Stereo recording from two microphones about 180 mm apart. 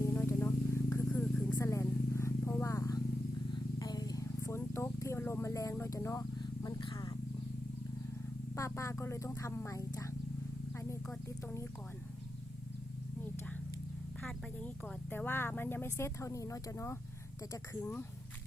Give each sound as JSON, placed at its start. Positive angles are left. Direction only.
{"t": 0.0, "sound": "a sound", "side_deg": 15}
{"t": 8.5, "sound": "speech", "side_deg": 15}
{"t": 10.7, "sound": "purr", "side_deg": 15}
{"t": 14.2, "sound": "vehicle", "side_deg": 5}
{"t": 17.5, "sound": "speech", "side_deg": 15}